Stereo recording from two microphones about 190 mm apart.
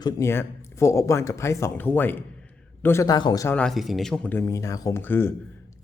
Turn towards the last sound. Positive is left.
turn(degrees=10)  # may be behind; listen again after turning